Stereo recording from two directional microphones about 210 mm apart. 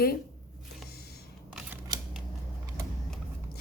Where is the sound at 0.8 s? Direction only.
50° left (ahead or behind).